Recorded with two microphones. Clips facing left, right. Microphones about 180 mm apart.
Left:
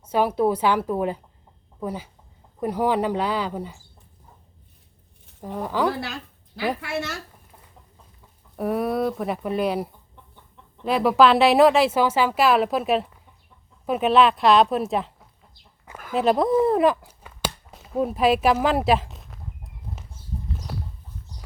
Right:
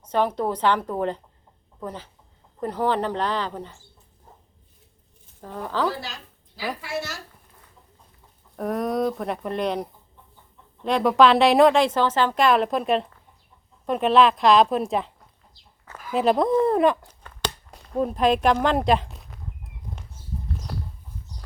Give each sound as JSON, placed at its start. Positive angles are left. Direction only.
{"t": 0.0, "sound": "a woman's voice", "side_deg": 10}
{"t": 5.4, "sound": "a woman's voice", "side_deg": 15}
{"t": 6.8, "sound": "speech", "side_deg": 65}
{"t": 8.5, "sound": "a woman's voice", "side_deg": 5}
{"t": 16.1, "sound": "speech", "side_deg": 0}
{"t": 20.7, "sound": "rodents", "side_deg": 0}